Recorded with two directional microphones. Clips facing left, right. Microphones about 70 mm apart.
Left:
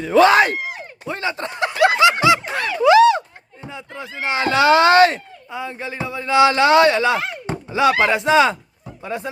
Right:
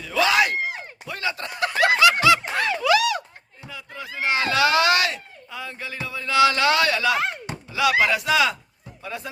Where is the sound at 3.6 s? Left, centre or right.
Left.